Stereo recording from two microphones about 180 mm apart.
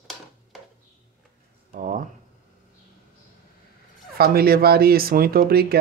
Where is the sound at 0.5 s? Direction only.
Centre (ahead or behind).